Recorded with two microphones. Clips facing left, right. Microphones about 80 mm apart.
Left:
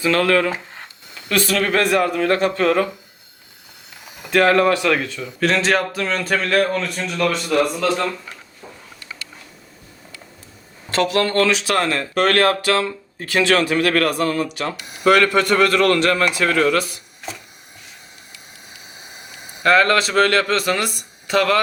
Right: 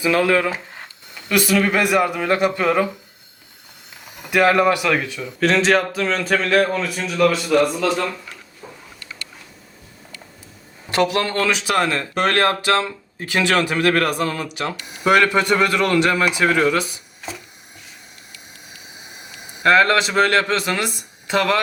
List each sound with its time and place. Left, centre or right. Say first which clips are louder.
0.0 s speech: even; centre
4.0 s a sound: even; centre
4.3 s speech: left 1 dB; centre
5.2 s speech: right 4 dB; centre
10.8 s speech: even; centre
19.6 s speech: even; centre